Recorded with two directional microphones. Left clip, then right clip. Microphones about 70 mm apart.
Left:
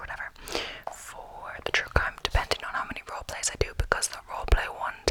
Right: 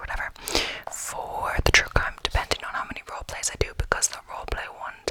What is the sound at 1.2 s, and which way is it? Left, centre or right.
Whispering, right.